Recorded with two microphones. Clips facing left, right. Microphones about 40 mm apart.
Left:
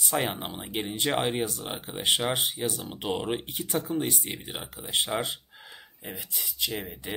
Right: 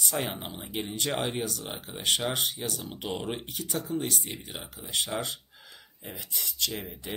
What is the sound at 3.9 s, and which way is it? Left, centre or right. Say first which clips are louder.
Speech: left 2 dB; centre.